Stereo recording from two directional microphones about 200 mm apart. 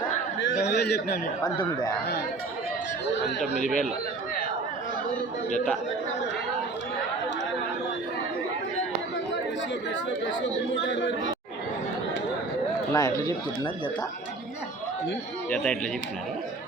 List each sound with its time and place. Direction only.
0.5 s a man's voice: 50° left (ahead or behind)
1.5 s speech: 20° left (ahead or behind)
3.7 s speech: centre (ahead or behind)
10.8 s speech: 70° left (ahead or behind)
12.9 s speech: 20° left (ahead or behind)
15.4 s speech: 5° left (ahead or behind)